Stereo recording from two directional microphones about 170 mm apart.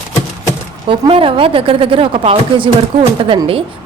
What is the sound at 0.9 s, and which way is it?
A woman's voice, 30° right (ahead or behind).